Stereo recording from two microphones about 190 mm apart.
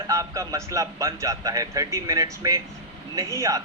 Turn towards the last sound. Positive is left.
turn(degrees=-15)  # may be behind; listen again after turning